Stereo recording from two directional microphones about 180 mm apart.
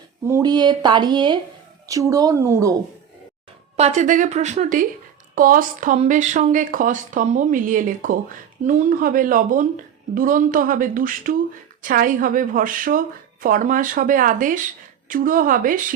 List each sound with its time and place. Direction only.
0.3 s speech: 20° right (ahead or behind)
3.8 s a woman's voice: 40° right (ahead or behind)